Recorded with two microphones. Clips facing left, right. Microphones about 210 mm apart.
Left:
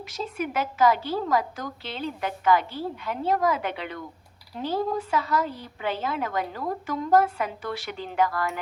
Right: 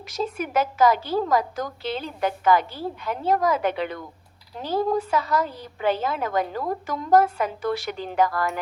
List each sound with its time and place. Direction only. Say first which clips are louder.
0.3 s a woman's voice: right 2 dB; 40° right (ahead or behind)